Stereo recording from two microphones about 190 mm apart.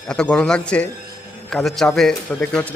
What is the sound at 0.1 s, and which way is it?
A man's voice, 5° left (ahead or behind).